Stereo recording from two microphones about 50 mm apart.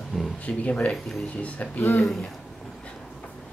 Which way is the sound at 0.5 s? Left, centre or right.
Left.